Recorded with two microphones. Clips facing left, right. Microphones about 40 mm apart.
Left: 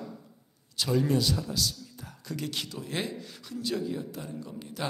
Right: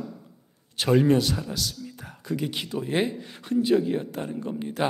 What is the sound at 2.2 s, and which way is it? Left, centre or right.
Speech, centre.